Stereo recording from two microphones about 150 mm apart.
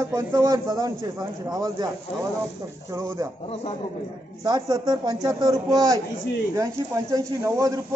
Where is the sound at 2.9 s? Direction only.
15° right (ahead or behind).